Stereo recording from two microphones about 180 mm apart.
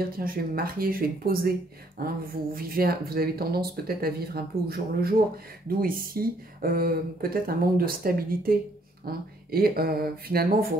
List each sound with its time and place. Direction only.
0.1 s speech: 55° right (ahead or behind)